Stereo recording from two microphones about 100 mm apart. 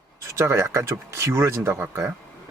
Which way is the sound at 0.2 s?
30° right (ahead or behind).